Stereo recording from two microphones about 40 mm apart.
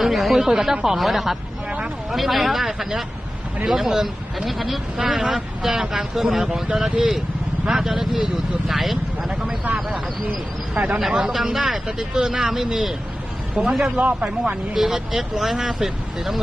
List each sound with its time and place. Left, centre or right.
0.0 s speech: centre
10.8 s speech: right
11.2 s speech: centre
14.0 s speech: right
14.7 s speech: centre